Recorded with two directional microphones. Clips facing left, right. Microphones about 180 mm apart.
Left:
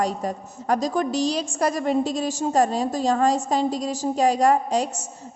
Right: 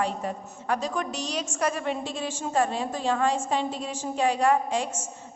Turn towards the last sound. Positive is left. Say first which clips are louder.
# left 4 dB
turn(degrees=40)  # may be behind; listen again after turning